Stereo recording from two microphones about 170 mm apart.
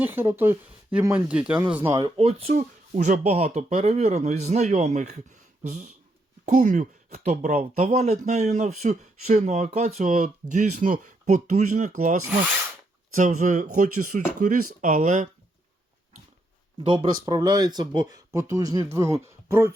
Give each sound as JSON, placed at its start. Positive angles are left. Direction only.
{"t": 0.0, "sound": "speech", "side_deg": -10}
{"t": 2.0, "sound": "speech", "side_deg": -35}
{"t": 13.1, "sound": "speech", "side_deg": -45}
{"t": 16.8, "sound": "speech", "side_deg": -30}